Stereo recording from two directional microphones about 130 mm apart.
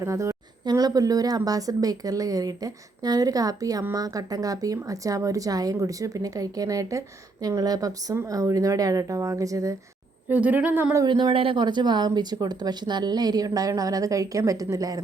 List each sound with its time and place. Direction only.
0.0 s a woman's voice: 25° right (ahead or behind)
10.2 s speech: 10° right (ahead or behind)
11.0 s speech: 35° right (ahead or behind)